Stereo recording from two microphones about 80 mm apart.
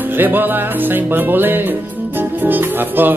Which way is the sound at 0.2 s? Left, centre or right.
Right.